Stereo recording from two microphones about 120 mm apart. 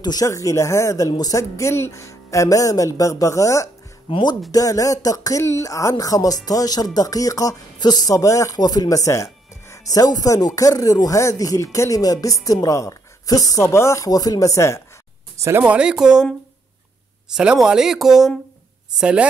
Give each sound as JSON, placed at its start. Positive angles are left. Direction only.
{"t": 0.0, "sound": "speech", "side_deg": 30}
{"t": 4.1, "sound": "speech", "side_deg": 40}
{"t": 15.6, "sound": "speech", "side_deg": -10}
{"t": 17.4, "sound": "speech", "side_deg": -10}